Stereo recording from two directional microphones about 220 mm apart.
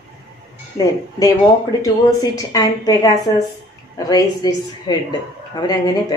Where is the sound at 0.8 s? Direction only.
15° left (ahead or behind).